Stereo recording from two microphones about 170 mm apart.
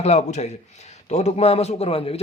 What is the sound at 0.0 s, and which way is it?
A man's voice, 40° left (ahead or behind).